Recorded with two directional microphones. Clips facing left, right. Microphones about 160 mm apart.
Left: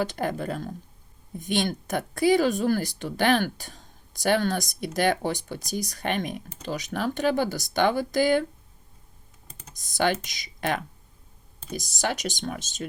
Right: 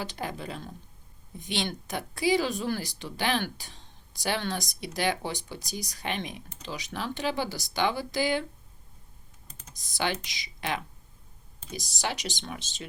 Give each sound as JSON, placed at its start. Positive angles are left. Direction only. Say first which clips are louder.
{"t": 0.0, "sound": "a woman's voice", "louder": "left 7 dB", "side_deg": 50}
{"t": 9.7, "sound": "a woman's voice", "louder": "left 6 dB", "side_deg": 50}